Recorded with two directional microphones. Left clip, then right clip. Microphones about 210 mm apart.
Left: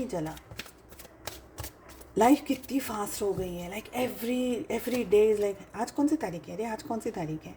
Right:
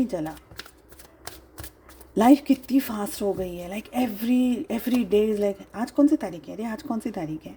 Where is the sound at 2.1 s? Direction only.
40° right (ahead or behind).